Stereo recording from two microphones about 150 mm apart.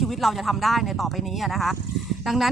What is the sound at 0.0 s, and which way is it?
Speech, centre (ahead or behind).